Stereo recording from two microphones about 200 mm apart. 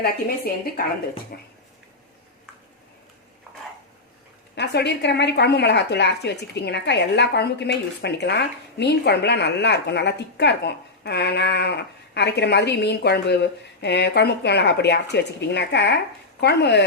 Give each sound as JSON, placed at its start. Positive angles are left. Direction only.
{"t": 0.0, "sound": "a woman's voice", "side_deg": 50}
{"t": 4.5, "sound": "speech", "side_deg": 55}